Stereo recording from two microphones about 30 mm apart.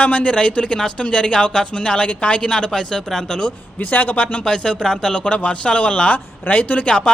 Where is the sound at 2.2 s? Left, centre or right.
Left.